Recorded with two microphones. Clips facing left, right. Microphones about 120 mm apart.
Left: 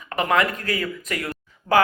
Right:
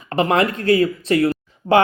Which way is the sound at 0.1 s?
30° right (ahead or behind).